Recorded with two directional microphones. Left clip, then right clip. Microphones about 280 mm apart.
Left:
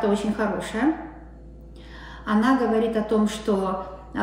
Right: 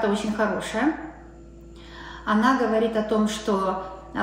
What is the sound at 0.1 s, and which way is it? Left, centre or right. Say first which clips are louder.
Speech: even; centre.